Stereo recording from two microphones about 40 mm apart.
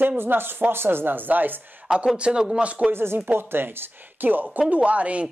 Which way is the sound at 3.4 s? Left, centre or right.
Right.